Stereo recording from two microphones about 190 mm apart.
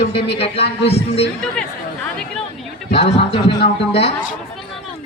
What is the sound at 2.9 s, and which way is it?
Speech, 30° left (ahead or behind).